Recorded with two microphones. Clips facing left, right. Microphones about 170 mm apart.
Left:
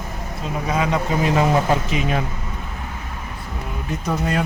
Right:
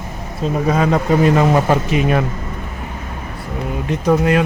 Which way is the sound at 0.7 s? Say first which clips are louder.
Right 4 dB; 45° right (ahead or behind).